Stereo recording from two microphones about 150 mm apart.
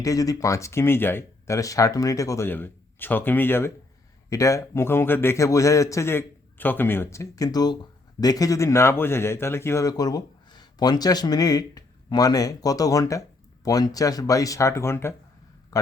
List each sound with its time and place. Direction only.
0.0 s speech: 20° left (ahead or behind)